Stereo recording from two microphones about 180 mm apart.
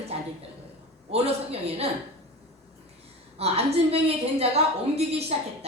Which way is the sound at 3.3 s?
35° right (ahead or behind).